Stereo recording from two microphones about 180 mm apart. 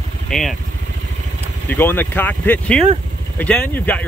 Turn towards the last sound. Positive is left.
turn(degrees=10)  # may be behind; listen again after turning